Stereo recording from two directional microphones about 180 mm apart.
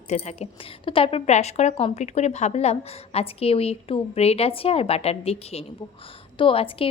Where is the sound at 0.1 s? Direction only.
40° left (ahead or behind).